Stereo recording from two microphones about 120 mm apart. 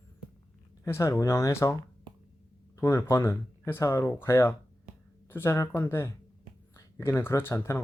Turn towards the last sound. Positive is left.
turn(degrees=20)  # may be behind; listen again after turning